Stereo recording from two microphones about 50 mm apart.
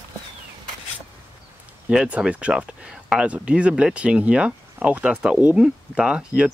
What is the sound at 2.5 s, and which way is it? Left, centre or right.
Speech, centre.